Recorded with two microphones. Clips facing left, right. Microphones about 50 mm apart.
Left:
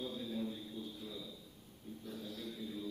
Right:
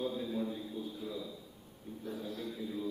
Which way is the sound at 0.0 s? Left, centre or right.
Centre.